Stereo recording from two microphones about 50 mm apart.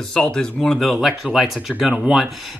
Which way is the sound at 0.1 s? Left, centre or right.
Centre.